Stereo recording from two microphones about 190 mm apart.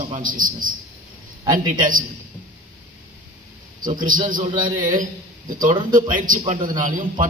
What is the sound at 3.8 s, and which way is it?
A man's voice, 45° right (ahead or behind).